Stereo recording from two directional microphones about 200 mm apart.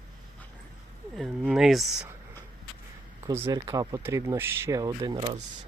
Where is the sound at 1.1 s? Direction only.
5° right (ahead or behind).